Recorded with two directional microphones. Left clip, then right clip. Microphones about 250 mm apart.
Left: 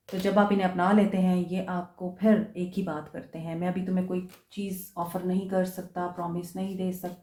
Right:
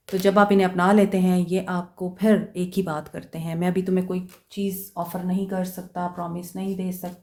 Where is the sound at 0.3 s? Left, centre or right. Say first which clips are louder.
Right 6 dB; right.